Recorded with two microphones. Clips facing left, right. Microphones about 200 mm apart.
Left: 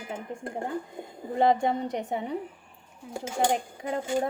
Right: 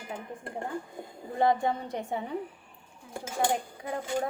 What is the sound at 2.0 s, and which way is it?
A woman's voice, 20° left (ahead or behind).